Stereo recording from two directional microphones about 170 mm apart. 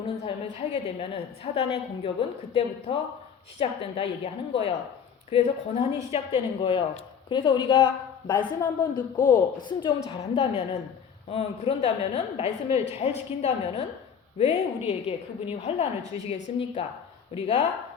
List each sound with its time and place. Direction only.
0.3 s a woman's voice: 35° left (ahead or behind)